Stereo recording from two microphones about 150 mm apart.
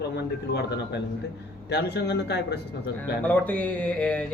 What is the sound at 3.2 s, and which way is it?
Speech, 10° left (ahead or behind).